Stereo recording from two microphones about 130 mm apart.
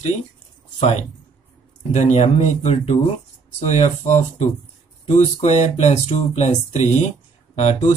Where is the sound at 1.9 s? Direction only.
65° left (ahead or behind).